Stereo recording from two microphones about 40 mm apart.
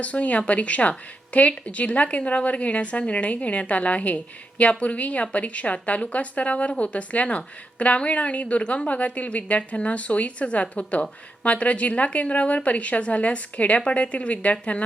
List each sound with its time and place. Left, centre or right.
0.0 s speech: left